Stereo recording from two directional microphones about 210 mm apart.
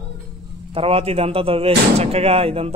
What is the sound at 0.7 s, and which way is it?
Speech, 30° right (ahead or behind).